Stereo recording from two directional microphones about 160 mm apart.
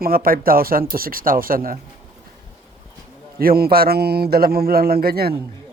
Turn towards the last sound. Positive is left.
turn(degrees=-75)  # may be behind; listen again after turning